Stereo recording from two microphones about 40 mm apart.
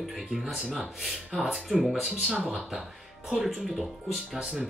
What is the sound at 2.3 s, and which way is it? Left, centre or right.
Speech, right.